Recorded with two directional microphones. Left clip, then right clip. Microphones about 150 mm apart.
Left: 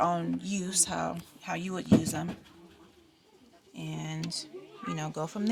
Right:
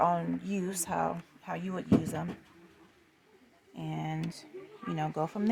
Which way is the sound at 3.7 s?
60° right (ahead or behind).